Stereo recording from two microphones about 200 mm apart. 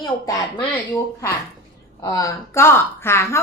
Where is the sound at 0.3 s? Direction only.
15° left (ahead or behind).